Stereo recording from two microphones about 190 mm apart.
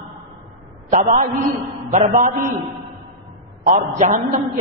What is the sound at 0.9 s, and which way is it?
A man's voice, 40° right (ahead or behind).